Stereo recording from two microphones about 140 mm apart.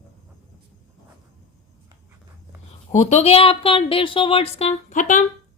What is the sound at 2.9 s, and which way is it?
Speech, 55° left (ahead or behind).